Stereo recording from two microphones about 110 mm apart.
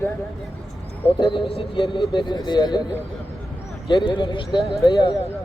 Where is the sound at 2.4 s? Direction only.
40° left (ahead or behind).